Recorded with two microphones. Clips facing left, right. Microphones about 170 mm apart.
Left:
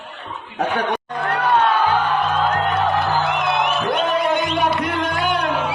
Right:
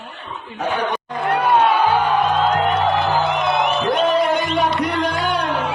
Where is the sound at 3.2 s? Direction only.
Centre (ahead or behind).